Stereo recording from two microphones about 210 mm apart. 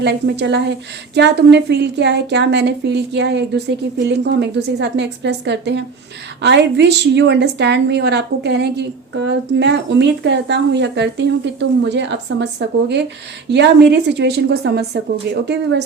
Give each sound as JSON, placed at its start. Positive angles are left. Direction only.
{"t": 0.0, "sound": "a woman's voice", "side_deg": -55}